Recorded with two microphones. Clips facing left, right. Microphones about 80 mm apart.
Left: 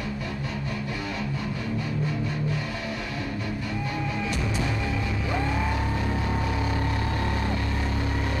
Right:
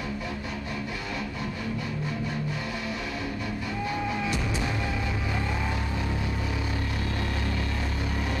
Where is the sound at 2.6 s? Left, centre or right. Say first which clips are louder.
Left 1 dB; centre.